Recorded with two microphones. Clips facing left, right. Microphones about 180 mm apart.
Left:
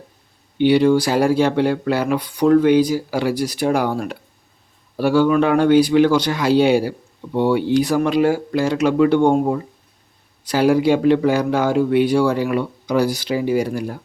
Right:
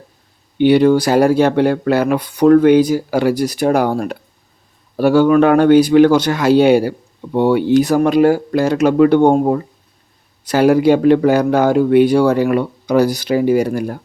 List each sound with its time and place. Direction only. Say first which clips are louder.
0.6 s speech: right 3 dB; 50° right (ahead or behind)